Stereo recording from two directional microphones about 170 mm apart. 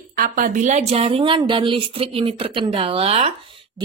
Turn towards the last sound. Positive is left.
turn(degrees=-35)  # may be behind; listen again after turning